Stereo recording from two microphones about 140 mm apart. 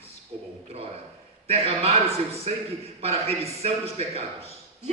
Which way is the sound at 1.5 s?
45° right (ahead or behind).